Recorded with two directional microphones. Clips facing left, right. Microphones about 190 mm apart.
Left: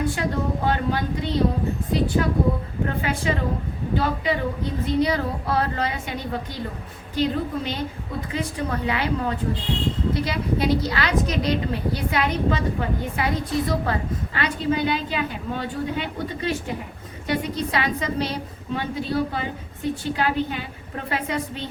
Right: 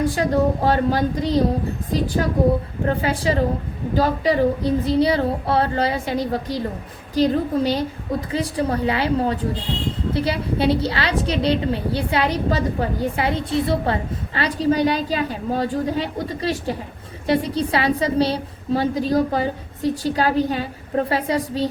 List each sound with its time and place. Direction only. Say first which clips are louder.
0.2 s a woman's voice: right 6 dB; 35° right (ahead or behind)
2.8 s a woman's voice: right 3 dB; 35° right (ahead or behind)